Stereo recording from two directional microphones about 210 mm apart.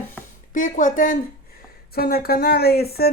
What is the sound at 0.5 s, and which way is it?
Speech, 40° left (ahead or behind).